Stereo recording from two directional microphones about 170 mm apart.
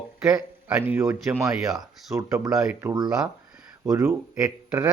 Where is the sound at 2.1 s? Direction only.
20° right (ahead or behind).